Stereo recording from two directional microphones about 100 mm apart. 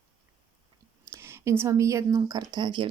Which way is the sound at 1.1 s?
25° right (ahead or behind).